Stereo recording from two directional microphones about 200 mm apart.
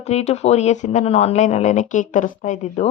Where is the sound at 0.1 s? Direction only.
35° left (ahead or behind).